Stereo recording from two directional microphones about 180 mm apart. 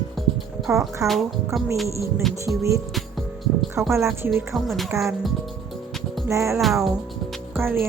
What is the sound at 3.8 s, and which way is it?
Music, 15° right (ahead or behind).